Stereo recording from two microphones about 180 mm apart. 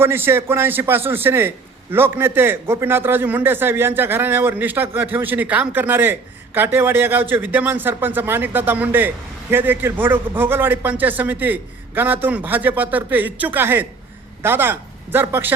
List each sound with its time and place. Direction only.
0.0 s a man's voice: 15° right (ahead or behind)